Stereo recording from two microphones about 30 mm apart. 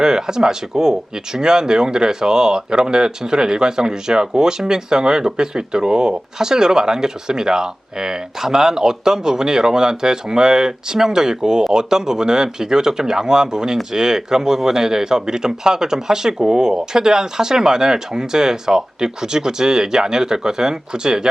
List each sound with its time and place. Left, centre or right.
0.0 s speech: right